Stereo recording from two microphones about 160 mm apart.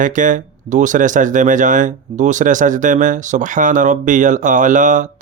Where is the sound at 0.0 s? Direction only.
55° right (ahead or behind).